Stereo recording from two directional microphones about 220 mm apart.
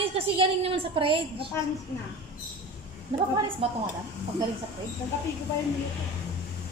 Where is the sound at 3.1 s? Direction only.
25° right (ahead or behind).